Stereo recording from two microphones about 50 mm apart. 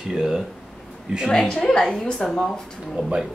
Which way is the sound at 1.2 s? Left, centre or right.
Centre.